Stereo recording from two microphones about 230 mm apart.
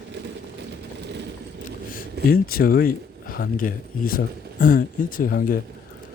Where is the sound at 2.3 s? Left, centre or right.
Left.